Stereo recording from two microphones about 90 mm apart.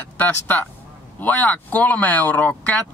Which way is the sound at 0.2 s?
20° left (ahead or behind).